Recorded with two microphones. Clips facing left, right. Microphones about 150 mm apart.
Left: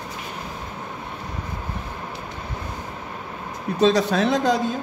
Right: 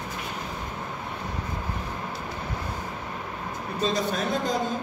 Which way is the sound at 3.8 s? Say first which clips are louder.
Left 8 dB; 85° left.